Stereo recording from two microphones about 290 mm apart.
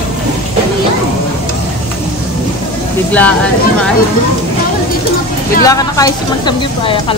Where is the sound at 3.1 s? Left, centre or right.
Centre.